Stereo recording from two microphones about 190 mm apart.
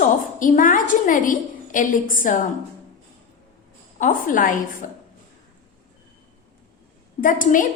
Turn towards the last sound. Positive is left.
turn(degrees=45)  # may be behind; listen again after turning